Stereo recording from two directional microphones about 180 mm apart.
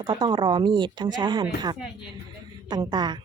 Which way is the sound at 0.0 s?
25° right (ahead or behind).